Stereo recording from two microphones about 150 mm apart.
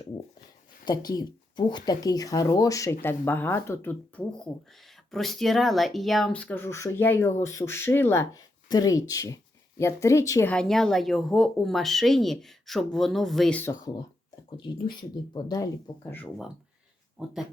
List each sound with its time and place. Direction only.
0.9 s speech: 25° left (ahead or behind)
10.5 s speech: 5° left (ahead or behind)
14.6 s speech: 30° left (ahead or behind)
17.2 s speech: 5° right (ahead or behind)